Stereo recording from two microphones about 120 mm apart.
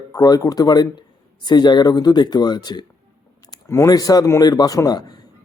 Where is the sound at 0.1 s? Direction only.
30° left (ahead or behind).